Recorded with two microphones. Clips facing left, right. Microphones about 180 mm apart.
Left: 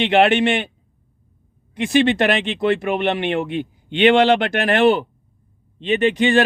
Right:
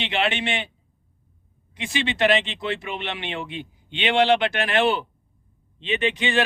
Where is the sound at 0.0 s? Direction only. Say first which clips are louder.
Left 10 dB; 50° left (ahead or behind).